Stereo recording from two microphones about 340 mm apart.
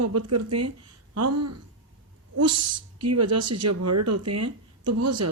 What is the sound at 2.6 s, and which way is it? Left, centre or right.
Speech, centre.